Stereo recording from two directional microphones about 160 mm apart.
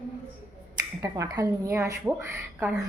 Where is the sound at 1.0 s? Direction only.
20° right (ahead or behind).